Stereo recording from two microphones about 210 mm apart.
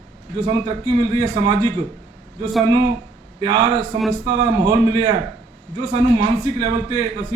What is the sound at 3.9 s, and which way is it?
A man's voice, 20° right (ahead or behind).